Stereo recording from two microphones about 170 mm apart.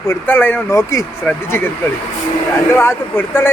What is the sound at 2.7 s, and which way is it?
Speech, 15° left (ahead or behind).